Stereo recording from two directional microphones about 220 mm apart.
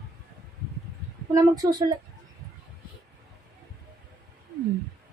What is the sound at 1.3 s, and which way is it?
Speech, 15° right (ahead or behind).